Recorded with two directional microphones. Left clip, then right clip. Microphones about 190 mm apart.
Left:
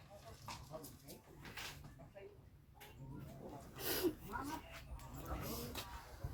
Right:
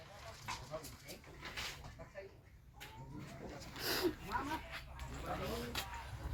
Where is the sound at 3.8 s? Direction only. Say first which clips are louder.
Right 4 dB; 20° left (ahead or behind).